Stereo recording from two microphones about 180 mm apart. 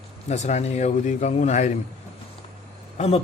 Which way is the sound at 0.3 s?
40° left (ahead or behind).